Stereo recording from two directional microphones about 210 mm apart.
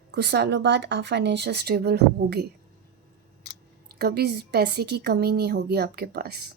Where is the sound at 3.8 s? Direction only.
50° right (ahead or behind).